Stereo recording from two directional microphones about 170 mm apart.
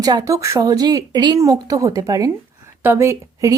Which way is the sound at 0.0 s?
20° right (ahead or behind).